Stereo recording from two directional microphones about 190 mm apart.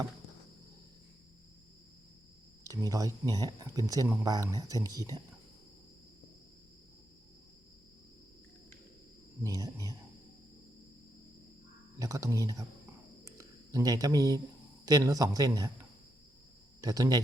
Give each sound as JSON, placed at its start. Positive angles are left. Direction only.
{"t": 2.6, "sound": "speech", "side_deg": -20}
{"t": 9.4, "sound": "speech", "side_deg": -15}
{"t": 11.9, "sound": "speech", "side_deg": -20}
{"t": 13.2, "sound": "a sound", "side_deg": -15}
{"t": 14.8, "sound": "speech", "side_deg": -20}
{"t": 16.8, "sound": "speech", "side_deg": -20}